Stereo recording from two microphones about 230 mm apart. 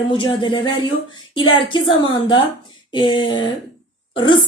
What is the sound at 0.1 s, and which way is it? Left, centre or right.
Speech, left.